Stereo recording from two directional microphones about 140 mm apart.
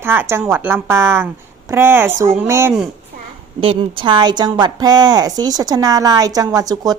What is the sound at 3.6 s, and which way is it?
A woman's voice, 40° right (ahead or behind).